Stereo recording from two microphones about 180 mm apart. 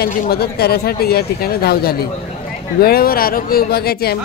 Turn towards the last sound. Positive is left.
turn(degrees=60)  # may be behind; listen again after turning